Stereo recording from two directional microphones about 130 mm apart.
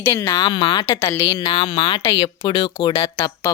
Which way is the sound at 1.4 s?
45° left (ahead or behind).